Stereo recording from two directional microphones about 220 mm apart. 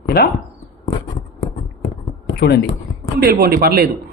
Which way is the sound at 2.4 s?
50° left (ahead or behind).